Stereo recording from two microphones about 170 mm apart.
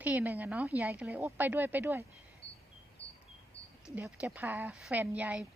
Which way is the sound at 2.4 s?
35° left (ahead or behind).